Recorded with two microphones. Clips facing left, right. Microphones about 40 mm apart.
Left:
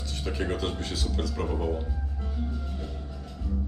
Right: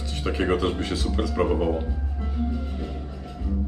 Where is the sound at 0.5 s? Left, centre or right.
Centre.